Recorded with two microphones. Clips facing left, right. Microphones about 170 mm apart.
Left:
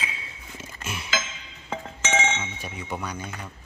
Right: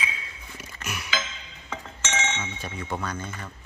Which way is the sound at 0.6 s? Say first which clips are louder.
Left 1 dB; 25° left (ahead or behind).